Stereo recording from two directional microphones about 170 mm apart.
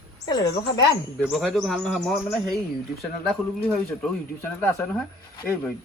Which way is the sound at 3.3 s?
Centre (ahead or behind).